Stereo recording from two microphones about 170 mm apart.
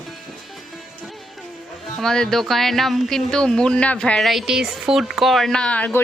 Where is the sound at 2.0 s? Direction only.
5° left (ahead or behind).